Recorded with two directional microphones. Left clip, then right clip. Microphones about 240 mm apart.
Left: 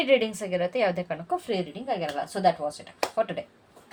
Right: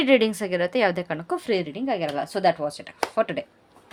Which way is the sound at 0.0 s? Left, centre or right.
Right.